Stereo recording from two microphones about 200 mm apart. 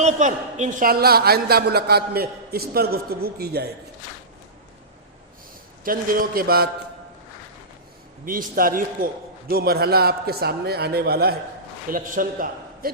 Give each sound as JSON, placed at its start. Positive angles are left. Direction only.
{"t": 0.0, "sound": "a man's voice", "side_deg": -35}
{"t": 5.8, "sound": "a man's voice", "side_deg": -45}
{"t": 8.2, "sound": "a man's voice", "side_deg": -45}